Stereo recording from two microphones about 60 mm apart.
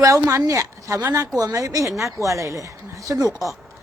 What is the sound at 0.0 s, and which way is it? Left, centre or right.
Speech, right.